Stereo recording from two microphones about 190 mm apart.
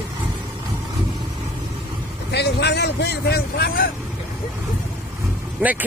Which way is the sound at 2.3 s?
60° left (ahead or behind).